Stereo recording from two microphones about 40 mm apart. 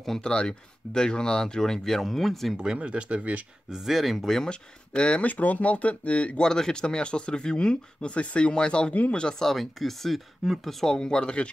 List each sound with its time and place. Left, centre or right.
0.2 s speech: left
2.0 s speech: centre
2.5 s speech: right
3.7 s speech: centre
4.5 s speech: left
5.3 s speech: left
6.4 s speech: centre
9.4 s speech: centre
10.9 s speech: centre